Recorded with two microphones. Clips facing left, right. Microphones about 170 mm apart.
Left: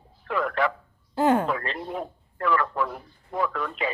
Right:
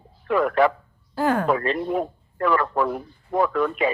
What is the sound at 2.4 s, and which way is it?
A man's voice, 40° right (ahead or behind).